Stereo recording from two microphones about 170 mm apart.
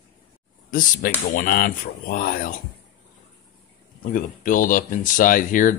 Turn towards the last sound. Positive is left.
turn(degrees=50)  # may be behind; listen again after turning